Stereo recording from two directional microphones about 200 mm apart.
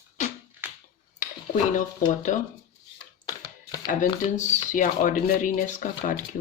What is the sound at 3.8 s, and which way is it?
Speech, 40° left (ahead or behind).